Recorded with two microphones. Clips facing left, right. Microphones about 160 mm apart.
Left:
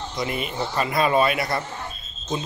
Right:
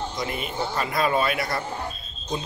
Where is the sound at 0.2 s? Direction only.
5° left (ahead or behind).